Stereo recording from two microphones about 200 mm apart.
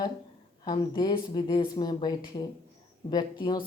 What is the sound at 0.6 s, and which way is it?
Speech, 20° left (ahead or behind).